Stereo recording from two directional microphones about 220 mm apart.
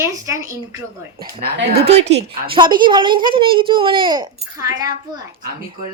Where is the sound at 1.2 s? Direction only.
45° right (ahead or behind).